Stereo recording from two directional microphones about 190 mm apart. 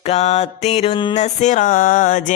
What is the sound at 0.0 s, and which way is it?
Mantra, 35° left (ahead or behind).